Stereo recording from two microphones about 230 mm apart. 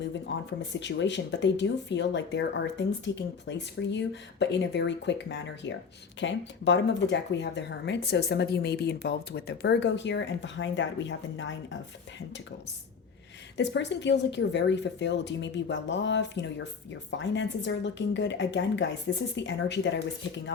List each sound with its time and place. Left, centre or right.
0.3 s speech: left
13.6 s speech: left